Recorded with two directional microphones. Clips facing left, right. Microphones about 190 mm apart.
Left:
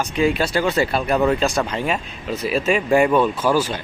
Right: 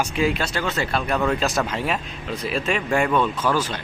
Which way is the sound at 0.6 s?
10° left (ahead or behind).